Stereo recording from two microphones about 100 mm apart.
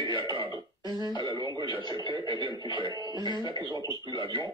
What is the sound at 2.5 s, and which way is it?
Speech, 45° left (ahead or behind).